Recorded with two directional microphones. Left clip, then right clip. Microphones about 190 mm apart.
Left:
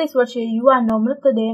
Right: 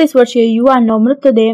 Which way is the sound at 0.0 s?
40° right (ahead or behind).